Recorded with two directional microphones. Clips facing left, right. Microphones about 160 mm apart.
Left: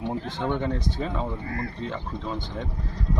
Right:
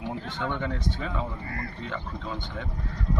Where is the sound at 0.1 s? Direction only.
35° left (ahead or behind).